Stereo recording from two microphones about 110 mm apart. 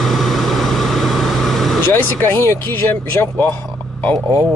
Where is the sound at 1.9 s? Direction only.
20° left (ahead or behind).